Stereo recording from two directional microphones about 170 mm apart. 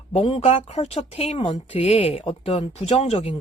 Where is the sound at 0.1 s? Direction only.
35° left (ahead or behind).